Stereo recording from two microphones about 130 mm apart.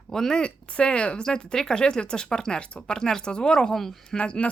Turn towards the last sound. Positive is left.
turn(degrees=10)  # may be behind; listen again after turning